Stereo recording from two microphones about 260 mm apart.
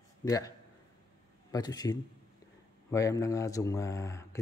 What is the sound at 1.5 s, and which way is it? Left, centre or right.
Speech, centre.